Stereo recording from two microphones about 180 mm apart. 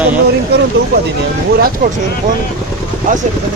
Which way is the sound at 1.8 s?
55° right (ahead or behind).